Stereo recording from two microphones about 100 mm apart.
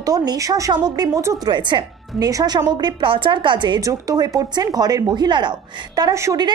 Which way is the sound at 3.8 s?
40° right (ahead or behind).